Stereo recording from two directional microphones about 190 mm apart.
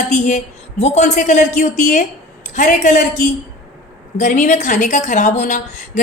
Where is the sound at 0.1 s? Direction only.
40° left (ahead or behind).